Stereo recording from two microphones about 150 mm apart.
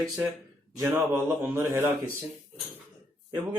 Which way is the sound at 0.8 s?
15° right (ahead or behind).